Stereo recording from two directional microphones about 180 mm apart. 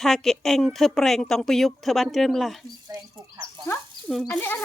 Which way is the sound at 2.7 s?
20° right (ahead or behind).